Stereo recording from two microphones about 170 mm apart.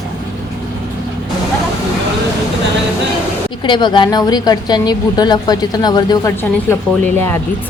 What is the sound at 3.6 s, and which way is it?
A woman's voice, 25° left (ahead or behind).